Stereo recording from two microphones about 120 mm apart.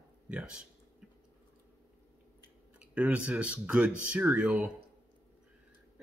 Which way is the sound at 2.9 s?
10° right (ahead or behind).